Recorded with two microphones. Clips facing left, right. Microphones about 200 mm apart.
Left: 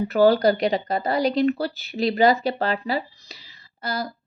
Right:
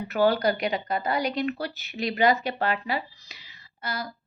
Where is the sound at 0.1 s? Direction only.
35° left (ahead or behind).